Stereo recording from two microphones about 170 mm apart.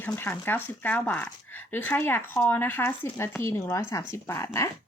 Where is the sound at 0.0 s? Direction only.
10° left (ahead or behind).